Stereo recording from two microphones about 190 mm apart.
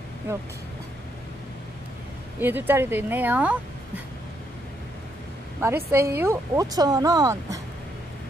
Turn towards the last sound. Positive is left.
turn(degrees=-15)  # may be behind; listen again after turning